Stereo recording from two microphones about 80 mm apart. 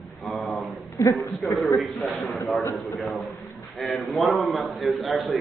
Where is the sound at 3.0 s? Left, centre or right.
Centre.